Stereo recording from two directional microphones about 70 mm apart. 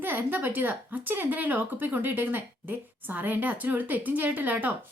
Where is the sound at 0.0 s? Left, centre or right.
Right.